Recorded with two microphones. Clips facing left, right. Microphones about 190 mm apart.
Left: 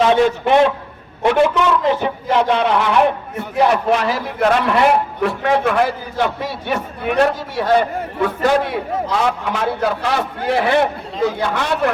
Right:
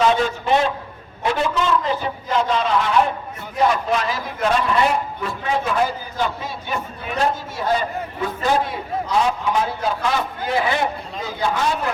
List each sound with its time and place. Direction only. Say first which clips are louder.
0.4 s a man's voice: left 5 dB; 60° left (ahead or behind)